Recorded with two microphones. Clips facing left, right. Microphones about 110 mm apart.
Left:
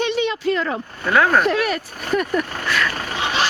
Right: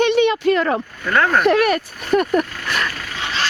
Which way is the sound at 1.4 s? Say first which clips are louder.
Right 5 dB; 60° right (ahead or behind).